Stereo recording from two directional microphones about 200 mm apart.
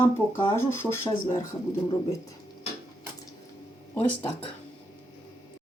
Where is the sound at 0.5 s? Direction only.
10° left (ahead or behind).